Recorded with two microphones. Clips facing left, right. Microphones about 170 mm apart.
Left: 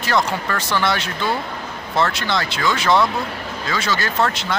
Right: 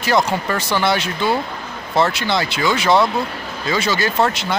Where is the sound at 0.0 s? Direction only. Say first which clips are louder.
Right 3 dB; 10° right (ahead or behind).